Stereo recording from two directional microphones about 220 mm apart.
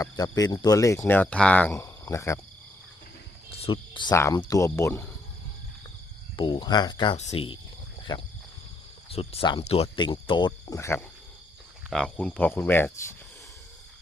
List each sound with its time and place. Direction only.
0.0 s speech: 15° left (ahead or behind)
3.5 s speech: 25° left (ahead or behind)
6.3 s speech: 20° left (ahead or behind)